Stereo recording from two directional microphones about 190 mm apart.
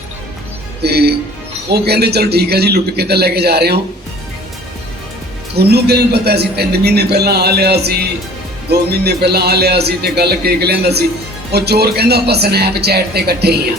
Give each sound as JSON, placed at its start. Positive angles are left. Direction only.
{"t": 0.8, "sound": "a man's voice", "side_deg": -55}
{"t": 5.5, "sound": "a man's voice", "side_deg": -60}